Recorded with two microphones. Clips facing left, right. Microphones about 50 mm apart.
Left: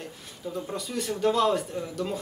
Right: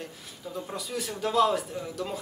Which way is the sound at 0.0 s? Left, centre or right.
Centre.